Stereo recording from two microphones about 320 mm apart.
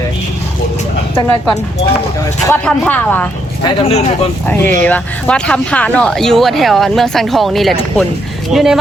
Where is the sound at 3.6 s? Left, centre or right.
Centre.